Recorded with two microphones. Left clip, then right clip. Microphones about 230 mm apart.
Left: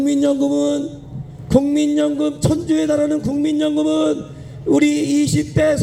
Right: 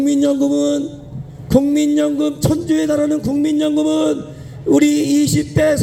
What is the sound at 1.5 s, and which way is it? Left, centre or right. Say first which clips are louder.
Music: right 1 dB; right.